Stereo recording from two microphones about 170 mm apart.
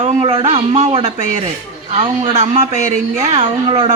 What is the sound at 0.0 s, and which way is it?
A man's voice, 35° right (ahead or behind).